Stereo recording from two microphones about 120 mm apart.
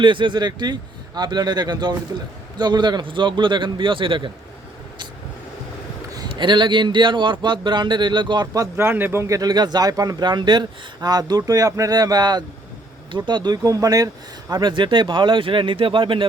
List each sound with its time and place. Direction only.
0.0 s speech: 40° right (ahead or behind)
6.1 s speech: 40° right (ahead or behind)
8.7 s speech: 20° right (ahead or behind); by 16.2 s 45° right (ahead or behind)